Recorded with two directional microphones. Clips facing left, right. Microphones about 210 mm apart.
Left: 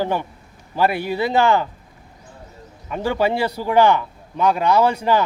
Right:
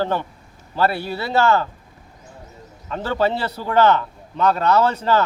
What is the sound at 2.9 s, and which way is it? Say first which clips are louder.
A man's voice: left 1 dB; 15° left (ahead or behind).